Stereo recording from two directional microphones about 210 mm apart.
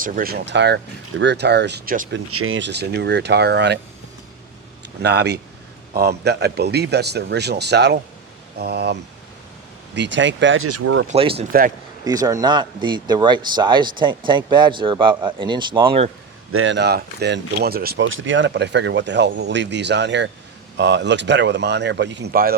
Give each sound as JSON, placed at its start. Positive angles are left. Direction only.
{"t": 0.0, "sound": "speech", "side_deg": -45}
{"t": 2.1, "sound": "speech", "side_deg": -80}
{"t": 5.0, "sound": "speech", "side_deg": -50}
{"t": 11.1, "sound": "speech", "side_deg": -30}
{"t": 12.0, "sound": "speech", "side_deg": -15}
{"t": 16.5, "sound": "speech", "side_deg": -70}